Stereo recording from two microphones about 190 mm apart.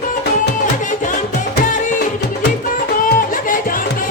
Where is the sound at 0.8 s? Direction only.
40° left (ahead or behind).